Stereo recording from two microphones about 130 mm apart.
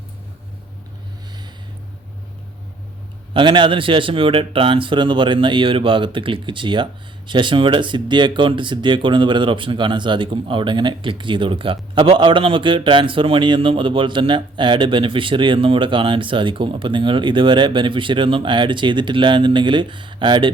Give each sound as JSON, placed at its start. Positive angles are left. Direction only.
{"t": 3.3, "sound": "speech", "side_deg": -40}